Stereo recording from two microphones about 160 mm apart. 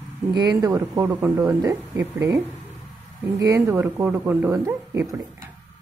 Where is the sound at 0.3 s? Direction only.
25° right (ahead or behind).